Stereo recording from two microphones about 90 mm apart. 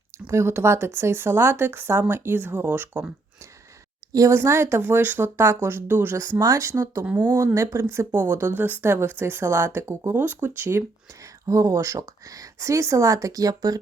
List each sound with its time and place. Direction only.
0.3 s speech: 30° right (ahead or behind)
4.1 s speech: 35° right (ahead or behind)
6.4 s speech: 35° right (ahead or behind)
7.0 s speech: 15° right (ahead or behind)
7.3 s speech: 35° right (ahead or behind)